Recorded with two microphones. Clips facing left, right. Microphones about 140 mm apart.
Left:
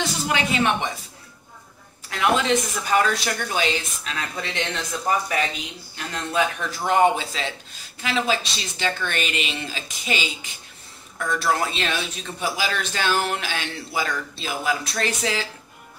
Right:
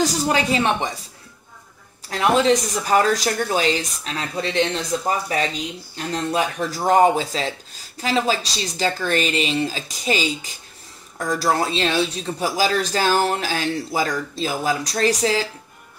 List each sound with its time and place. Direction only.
0.0 s speech: 40° right (ahead or behind)
2.0 s speech: 35° right (ahead or behind)